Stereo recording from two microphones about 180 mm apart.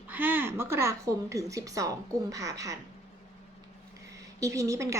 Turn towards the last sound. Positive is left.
turn(degrees=-15)  # may be behind; listen again after turning